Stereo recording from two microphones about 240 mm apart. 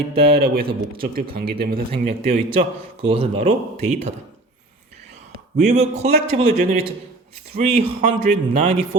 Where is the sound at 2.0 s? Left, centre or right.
Right.